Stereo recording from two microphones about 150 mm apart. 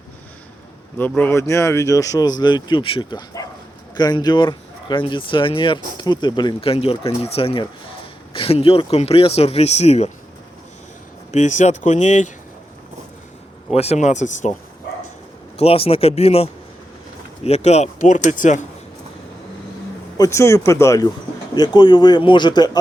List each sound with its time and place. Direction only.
0.9 s speech: 10° left (ahead or behind); by 10.1 s 45° left (ahead or behind)
11.3 s speech: 50° left (ahead or behind)
13.7 s speech: 45° left (ahead or behind)
15.5 s speech: 40° left (ahead or behind)
20.1 s speech: 20° left (ahead or behind)